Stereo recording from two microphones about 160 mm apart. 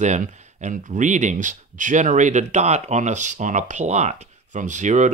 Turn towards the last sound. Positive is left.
turn(degrees=-50)  # may be behind; listen again after turning